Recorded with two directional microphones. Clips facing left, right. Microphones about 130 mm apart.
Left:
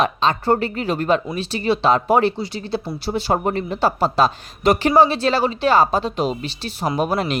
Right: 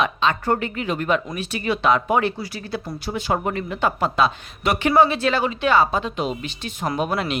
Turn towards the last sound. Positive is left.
turn(degrees=40)  # may be behind; listen again after turning